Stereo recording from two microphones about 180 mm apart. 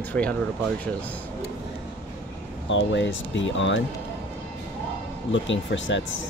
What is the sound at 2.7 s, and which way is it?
Speech, 90° left.